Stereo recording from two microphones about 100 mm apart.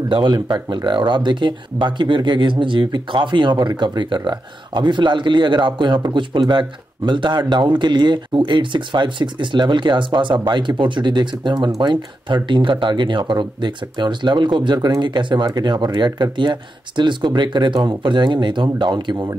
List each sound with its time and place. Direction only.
0.1 s speech: 50° right (ahead or behind)